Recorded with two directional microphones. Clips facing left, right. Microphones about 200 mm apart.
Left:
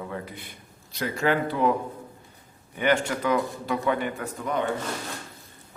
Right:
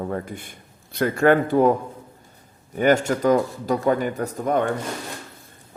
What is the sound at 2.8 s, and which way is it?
A man's voice, 45° right (ahead or behind).